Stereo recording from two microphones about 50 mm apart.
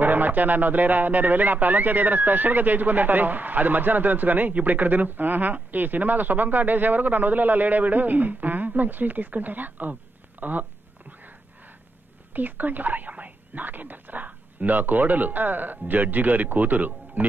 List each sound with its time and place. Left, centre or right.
0.0 s speech: right
10.4 s a sound: right
12.4 s speech: right